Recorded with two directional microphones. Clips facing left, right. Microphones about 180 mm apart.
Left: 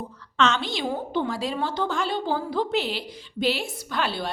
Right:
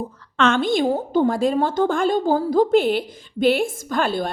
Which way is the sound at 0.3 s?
50° right (ahead or behind).